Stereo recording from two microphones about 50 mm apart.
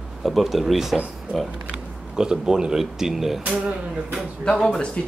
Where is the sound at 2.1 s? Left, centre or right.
Centre.